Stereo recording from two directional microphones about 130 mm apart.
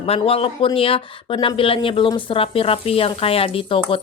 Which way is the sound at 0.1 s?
50° left (ahead or behind).